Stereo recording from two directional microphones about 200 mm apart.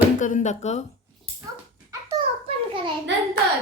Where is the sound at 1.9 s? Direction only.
15° right (ahead or behind).